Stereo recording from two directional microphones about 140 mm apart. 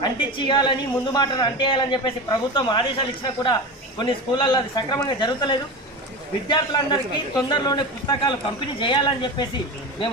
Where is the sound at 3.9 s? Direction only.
35° left (ahead or behind).